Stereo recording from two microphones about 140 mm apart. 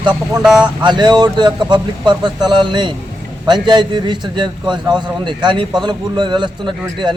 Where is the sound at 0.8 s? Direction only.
30° right (ahead or behind).